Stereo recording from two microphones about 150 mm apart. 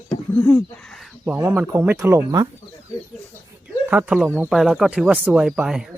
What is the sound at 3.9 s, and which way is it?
Speech, 10° right (ahead or behind).